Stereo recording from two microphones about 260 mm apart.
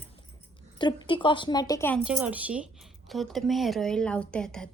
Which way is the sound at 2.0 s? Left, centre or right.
Centre.